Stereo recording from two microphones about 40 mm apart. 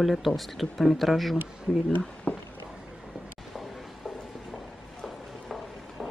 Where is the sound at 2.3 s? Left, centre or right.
Left.